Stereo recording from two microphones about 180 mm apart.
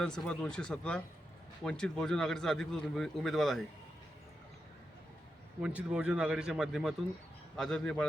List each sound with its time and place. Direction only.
0.0 s a man's voice: 5° left (ahead or behind)
5.6 s a man's voice: 5° right (ahead or behind)